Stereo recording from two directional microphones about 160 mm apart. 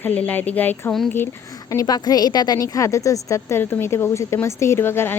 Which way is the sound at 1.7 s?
25° left (ahead or behind).